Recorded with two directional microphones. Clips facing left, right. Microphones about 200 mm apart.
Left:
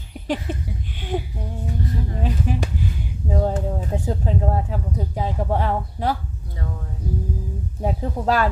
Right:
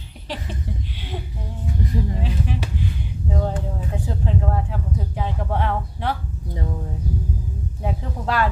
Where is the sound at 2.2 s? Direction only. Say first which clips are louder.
Left 2 dB; 45° left (ahead or behind).